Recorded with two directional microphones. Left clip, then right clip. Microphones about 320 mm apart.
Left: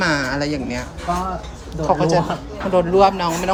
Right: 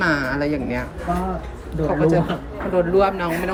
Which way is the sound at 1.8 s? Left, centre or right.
Centre.